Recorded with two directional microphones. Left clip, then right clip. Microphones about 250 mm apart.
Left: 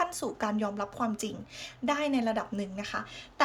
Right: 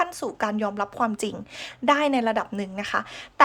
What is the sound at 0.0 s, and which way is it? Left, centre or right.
A woman's voice, centre.